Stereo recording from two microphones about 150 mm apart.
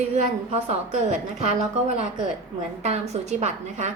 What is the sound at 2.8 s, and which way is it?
A woman's voice, 45° right (ahead or behind).